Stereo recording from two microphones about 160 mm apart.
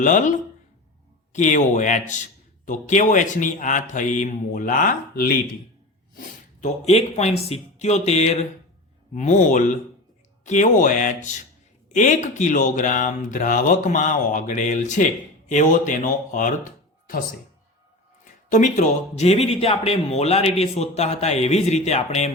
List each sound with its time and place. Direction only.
0.0 s speech: 50° left (ahead or behind)
6.1 s a man's voice: 45° left (ahead or behind)
18.5 s a man's voice: 50° left (ahead or behind)